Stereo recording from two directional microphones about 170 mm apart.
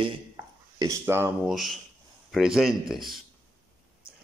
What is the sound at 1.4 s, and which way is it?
Speech, centre (ahead or behind).